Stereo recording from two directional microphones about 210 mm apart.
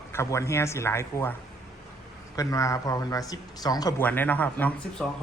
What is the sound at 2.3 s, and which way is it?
A man's voice, 15° left (ahead or behind).